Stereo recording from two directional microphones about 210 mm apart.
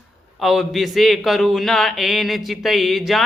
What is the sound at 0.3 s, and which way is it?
A man's voice, centre (ahead or behind).